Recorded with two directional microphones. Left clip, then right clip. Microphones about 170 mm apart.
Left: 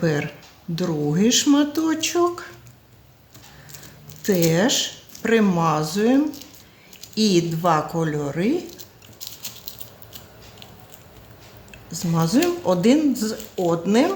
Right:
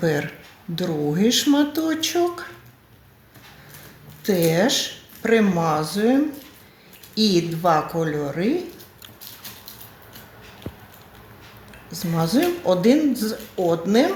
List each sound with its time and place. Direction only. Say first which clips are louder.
0.0 s speech: right 1 dB; 30° left (ahead or behind)
4.2 s speech: even; 35° left (ahead or behind)
11.9 s speech: even; 40° left (ahead or behind)